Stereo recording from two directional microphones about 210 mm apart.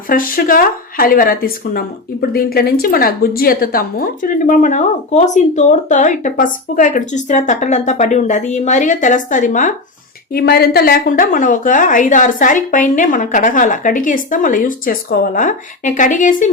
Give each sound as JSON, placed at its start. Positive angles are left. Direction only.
{"t": 0.1, "sound": "speech", "side_deg": 40}
{"t": 10.3, "sound": "speech", "side_deg": 50}